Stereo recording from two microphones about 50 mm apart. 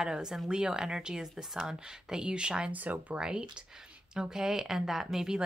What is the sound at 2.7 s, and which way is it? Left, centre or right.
Speech, right.